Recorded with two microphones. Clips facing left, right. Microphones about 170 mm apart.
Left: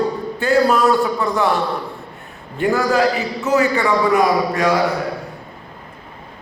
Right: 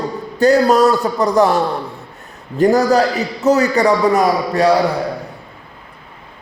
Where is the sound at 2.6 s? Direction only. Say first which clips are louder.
Right 4 dB; 40° right (ahead or behind).